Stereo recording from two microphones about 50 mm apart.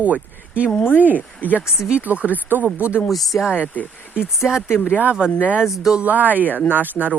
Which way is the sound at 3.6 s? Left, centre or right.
Left.